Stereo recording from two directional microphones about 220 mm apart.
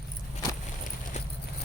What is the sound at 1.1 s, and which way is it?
Clip-clop, 30° left (ahead or behind).